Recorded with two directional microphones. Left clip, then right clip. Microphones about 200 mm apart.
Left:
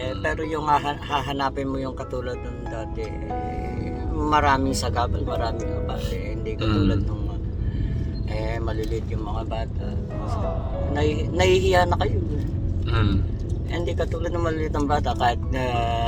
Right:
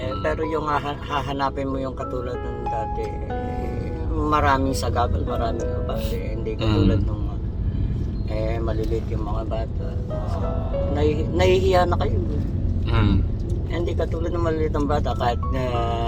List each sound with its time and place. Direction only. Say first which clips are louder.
0.3 s speech: left 1 dB; 20° left (ahead or behind)
4.2 s speech: even; 15° left (ahead or behind)
6.6 s a man's voice: right 2 dB; 10° right (ahead or behind)
10.9 s speech: even; 25° left (ahead or behind)
12.9 s a man's voice: right 2 dB; 10° right (ahead or behind)
14.3 s speech: right 3 dB; 25° left (ahead or behind)